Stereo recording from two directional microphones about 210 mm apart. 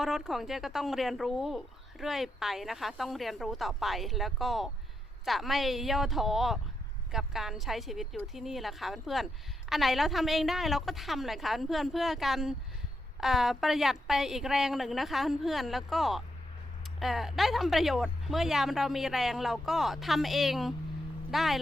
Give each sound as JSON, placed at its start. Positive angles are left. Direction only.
{"t": 0.0, "sound": "speech", "side_deg": 0}